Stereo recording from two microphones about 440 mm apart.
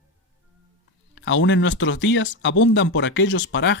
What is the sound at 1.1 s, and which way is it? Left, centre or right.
Speech, left.